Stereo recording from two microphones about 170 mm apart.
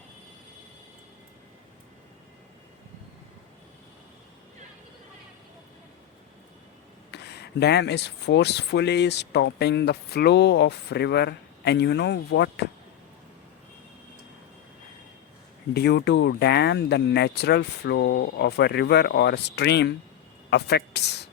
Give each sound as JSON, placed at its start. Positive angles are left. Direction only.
{"t": 7.1, "sound": "speech", "side_deg": 75}
{"t": 15.7, "sound": "speech", "side_deg": 75}